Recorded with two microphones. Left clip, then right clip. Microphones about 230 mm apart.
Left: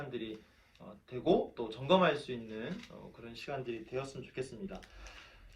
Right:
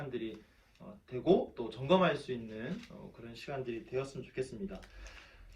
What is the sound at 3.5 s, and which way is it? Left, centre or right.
Speech, centre.